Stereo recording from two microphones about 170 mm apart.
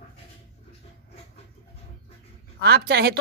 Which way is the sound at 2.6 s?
70° right (ahead or behind).